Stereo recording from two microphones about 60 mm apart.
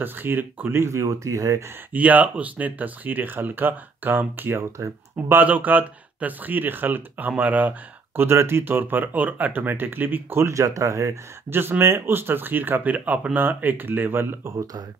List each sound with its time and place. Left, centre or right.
0.0 s speech: right
0.7 s speech: right
1.9 s speech: right
4.6 s speech: right
5.3 s speech: right
8.2 s speech: right
10.4 s speech: right
11.8 s speech: right